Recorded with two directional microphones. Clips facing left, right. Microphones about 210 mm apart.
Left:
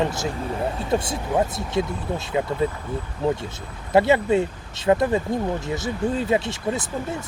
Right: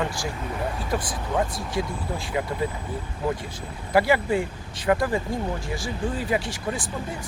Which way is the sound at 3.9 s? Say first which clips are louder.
Left 3 dB; 25° left (ahead or behind).